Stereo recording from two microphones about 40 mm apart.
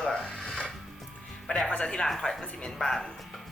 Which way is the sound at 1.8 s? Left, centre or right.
Left.